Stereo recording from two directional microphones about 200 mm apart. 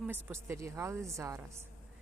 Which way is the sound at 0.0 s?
10° right (ahead or behind).